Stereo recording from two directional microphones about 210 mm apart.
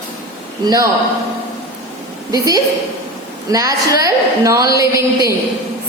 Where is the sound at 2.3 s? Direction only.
15° right (ahead or behind).